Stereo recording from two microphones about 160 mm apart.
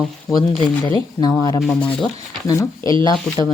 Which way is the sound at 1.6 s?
5° left (ahead or behind).